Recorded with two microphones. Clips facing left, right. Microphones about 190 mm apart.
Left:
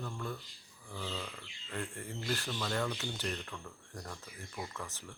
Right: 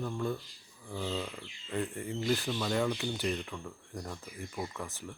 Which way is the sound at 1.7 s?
15° right (ahead or behind).